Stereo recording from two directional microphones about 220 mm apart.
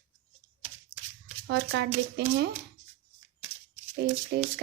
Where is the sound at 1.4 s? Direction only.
55° right (ahead or behind).